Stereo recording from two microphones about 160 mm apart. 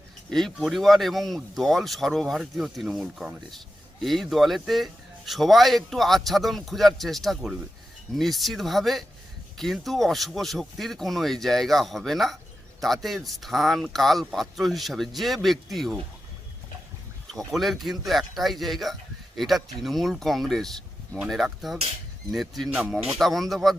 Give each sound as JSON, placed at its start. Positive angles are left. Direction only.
{"t": 0.3, "sound": "speech", "side_deg": 0}
{"t": 17.3, "sound": "speech", "side_deg": 0}